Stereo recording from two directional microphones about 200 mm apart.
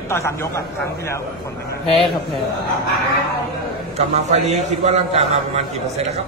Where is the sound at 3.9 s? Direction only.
35° right (ahead or behind).